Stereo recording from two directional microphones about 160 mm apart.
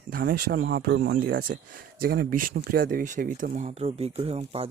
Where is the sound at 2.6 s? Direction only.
65° right (ahead or behind); by 4.7 s 40° right (ahead or behind).